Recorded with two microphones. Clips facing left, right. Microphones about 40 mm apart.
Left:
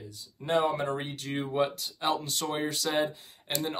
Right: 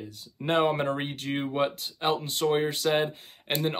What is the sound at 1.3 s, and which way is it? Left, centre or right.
Speech, right.